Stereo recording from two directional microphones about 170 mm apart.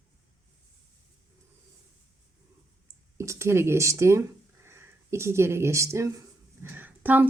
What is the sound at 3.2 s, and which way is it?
Speech, 15° right (ahead or behind).